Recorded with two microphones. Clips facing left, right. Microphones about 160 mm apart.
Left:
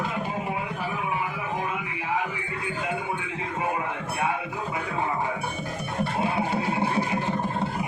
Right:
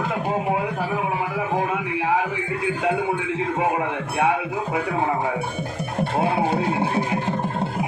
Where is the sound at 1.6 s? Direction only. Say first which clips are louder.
Right 7 dB; 75° right (ahead or behind).